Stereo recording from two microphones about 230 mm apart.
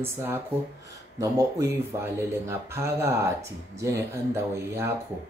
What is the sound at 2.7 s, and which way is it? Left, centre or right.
Speech, centre.